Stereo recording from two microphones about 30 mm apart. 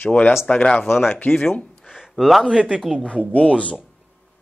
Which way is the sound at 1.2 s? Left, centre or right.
Left.